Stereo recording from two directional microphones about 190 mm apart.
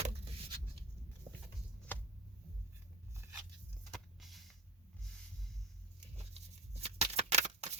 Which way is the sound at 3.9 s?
Centre (ahead or behind).